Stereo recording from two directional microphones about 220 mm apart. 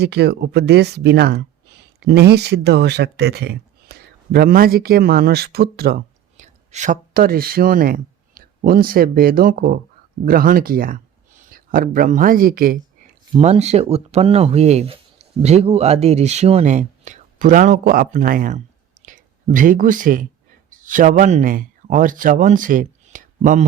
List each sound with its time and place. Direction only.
0.0 s speech: 50° right (ahead or behind)
13.3 s speech: 30° right (ahead or behind)